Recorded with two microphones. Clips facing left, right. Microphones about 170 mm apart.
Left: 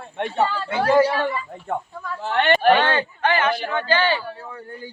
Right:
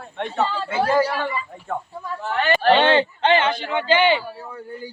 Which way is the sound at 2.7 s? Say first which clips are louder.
Right 3 dB; 20° right (ahead or behind).